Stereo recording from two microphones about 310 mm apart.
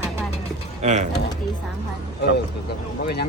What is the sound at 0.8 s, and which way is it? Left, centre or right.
Speech, right.